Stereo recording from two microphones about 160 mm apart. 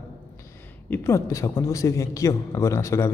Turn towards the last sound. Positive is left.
turn(degrees=20)  # may be behind; listen again after turning